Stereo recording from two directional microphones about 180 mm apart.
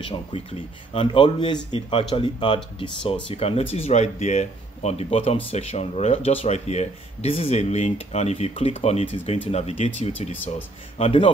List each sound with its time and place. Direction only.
0.9 s speech: 30° left (ahead or behind)